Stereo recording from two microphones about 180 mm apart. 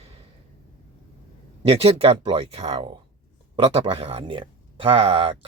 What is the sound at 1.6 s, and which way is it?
Speech, 35° right (ahead or behind).